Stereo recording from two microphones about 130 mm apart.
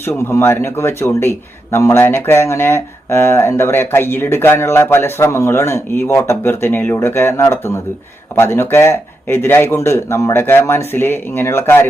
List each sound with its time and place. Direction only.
0.3 s a man's voice: 20° left (ahead or behind)